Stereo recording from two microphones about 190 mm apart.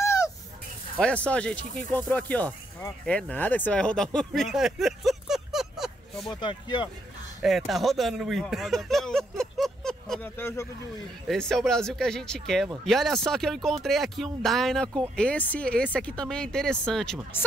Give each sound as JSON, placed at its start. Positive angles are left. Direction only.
{"t": 0.0, "sound": "a sound", "side_deg": 15}
{"t": 0.9, "sound": "speech", "side_deg": 5}
{"t": 6.4, "sound": "speech", "side_deg": 20}
{"t": 7.4, "sound": "speech", "side_deg": 0}
{"t": 11.2, "sound": "speech", "side_deg": 5}